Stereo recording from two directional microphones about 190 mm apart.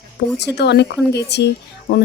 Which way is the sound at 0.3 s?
65° left (ahead or behind).